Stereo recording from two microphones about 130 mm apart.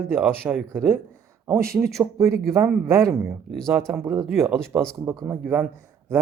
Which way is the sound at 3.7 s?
15° right (ahead or behind).